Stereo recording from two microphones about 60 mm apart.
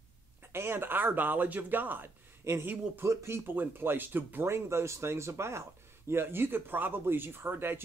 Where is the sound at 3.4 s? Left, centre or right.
Right.